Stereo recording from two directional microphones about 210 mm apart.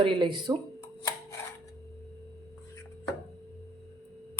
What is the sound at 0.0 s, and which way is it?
Speech, 25° right (ahead or behind).